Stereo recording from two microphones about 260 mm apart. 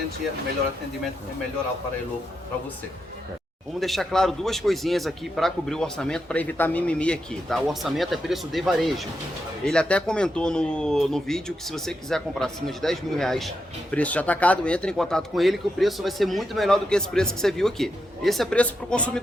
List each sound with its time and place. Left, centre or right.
3.8 s a man's voice: centre